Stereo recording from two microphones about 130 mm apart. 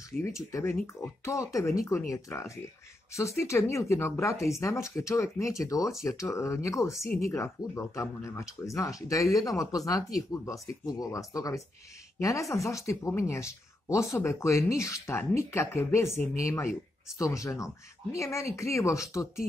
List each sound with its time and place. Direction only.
0.2 s speech: 25° left (ahead or behind)